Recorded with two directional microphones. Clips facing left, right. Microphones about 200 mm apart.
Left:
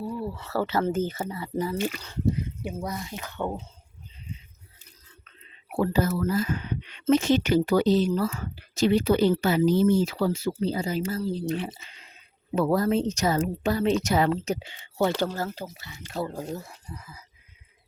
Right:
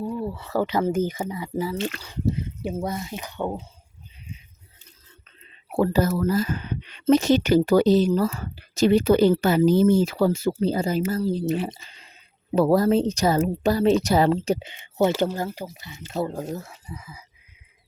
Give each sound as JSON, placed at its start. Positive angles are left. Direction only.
{"t": 0.0, "sound": "speech", "side_deg": -15}
{"t": 1.7, "sound": "speech", "side_deg": 10}
{"t": 2.6, "sound": "speech", "side_deg": -25}
{"t": 5.7, "sound": "speech", "side_deg": -40}
{"t": 11.8, "sound": "drip", "side_deg": -35}
{"t": 12.5, "sound": "speech", "side_deg": -35}
{"t": 16.5, "sound": "speech", "side_deg": -5}